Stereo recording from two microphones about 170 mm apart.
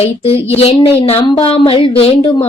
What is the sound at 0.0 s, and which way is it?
A woman's voice, 35° left (ahead or behind).